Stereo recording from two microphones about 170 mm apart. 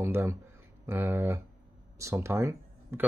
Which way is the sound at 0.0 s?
15° right (ahead or behind).